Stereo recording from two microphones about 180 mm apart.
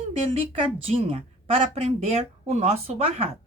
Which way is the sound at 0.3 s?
30° right (ahead or behind).